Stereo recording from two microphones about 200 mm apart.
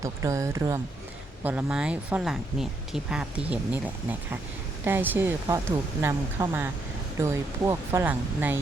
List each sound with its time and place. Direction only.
0.0 s speech: 15° right (ahead or behind)